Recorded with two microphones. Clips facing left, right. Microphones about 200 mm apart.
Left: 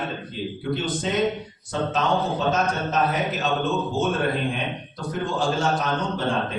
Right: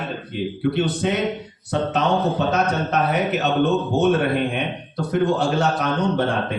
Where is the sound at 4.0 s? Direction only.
65° right (ahead or behind).